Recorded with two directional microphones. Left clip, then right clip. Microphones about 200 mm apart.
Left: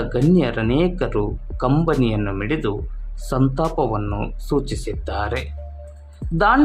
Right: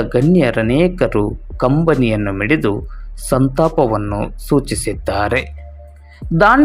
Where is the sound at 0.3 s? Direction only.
20° right (ahead or behind).